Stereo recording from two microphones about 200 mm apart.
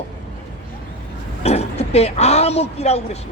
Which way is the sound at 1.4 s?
30° left (ahead or behind).